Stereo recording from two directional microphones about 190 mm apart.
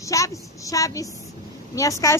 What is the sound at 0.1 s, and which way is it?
A woman's voice, 15° left (ahead or behind).